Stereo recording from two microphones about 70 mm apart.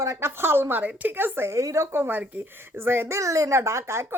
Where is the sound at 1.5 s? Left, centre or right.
Right.